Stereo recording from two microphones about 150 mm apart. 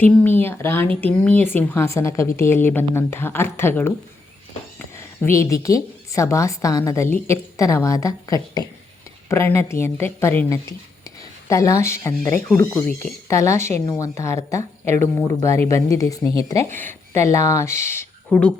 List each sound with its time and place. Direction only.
0.0 s speech: 10° left (ahead or behind)
4.9 s a sound: 20° left (ahead or behind)
5.6 s a woman's voice: 20° left (ahead or behind)